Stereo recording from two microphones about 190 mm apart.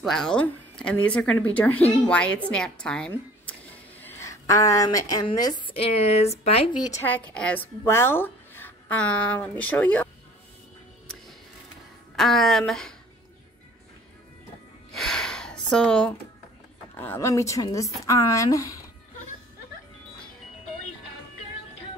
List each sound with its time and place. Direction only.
0.0 s a woman's voice: centre (ahead or behind); by 6.7 s 30° left (ahead or behind)
6.8 s a woman's voice: 15° left (ahead or behind)
12.2 s speech: centre (ahead or behind)
15.0 s a sound: 5° left (ahead or behind)
17.0 s a woman's voice: 15° left (ahead or behind)